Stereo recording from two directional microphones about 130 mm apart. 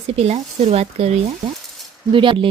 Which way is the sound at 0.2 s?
55° right (ahead or behind).